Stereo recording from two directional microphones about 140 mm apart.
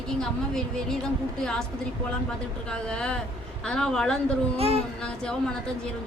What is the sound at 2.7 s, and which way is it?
A woman's voice, 5° left (ahead or behind).